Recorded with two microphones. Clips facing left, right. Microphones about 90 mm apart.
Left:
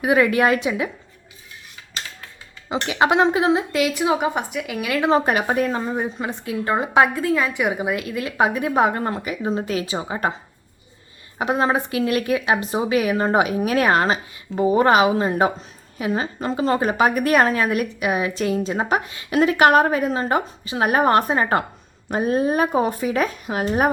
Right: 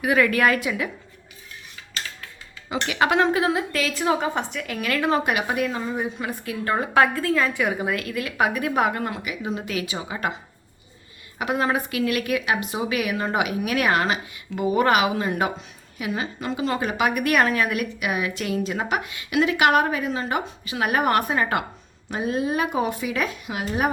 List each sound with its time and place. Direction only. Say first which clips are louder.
0.0 s a woman's voice: left 3 dB; 25° left (ahead or behind)
2.6 s a woman's voice: left 3 dB; 25° left (ahead or behind)
5.0 s a woman's voice: left 5 dB; 30° left (ahead or behind)
11.3 s a woman's voice: left 3 dB; 30° left (ahead or behind)
22.1 s a woman's voice: left 5 dB; 45° left (ahead or behind)